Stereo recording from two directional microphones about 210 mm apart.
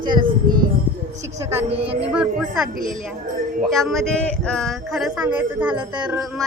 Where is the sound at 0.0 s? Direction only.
20° right (ahead or behind).